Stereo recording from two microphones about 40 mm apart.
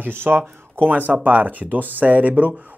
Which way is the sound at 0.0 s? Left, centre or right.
Right.